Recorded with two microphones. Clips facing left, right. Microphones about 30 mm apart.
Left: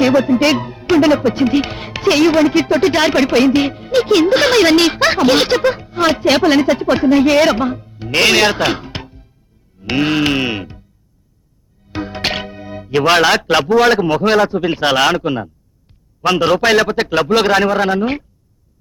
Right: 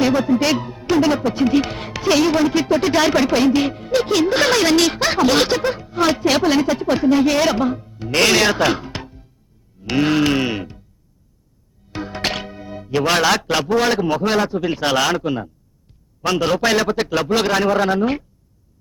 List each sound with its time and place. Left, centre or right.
0.0 s speech: left
11.9 s music: left
13.1 s speech: left
15.9 s a sound: left
16.6 s speech: left